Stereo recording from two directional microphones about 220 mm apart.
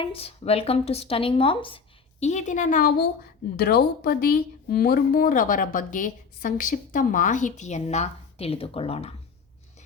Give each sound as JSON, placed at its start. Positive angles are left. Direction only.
{"t": 0.0, "sound": "speech", "side_deg": 25}